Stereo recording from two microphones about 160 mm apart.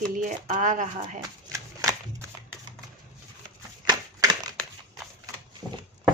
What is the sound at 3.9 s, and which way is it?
Crushing, 25° right (ahead or behind).